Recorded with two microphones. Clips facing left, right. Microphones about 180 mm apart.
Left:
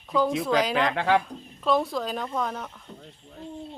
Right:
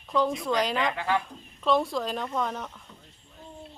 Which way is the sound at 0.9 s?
75° left (ahead or behind).